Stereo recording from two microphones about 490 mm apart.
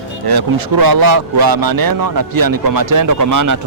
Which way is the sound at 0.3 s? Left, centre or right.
Right.